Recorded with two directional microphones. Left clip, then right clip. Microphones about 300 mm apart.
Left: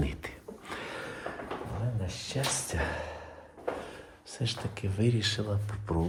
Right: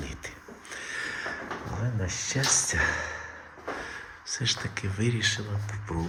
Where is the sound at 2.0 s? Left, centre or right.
Centre.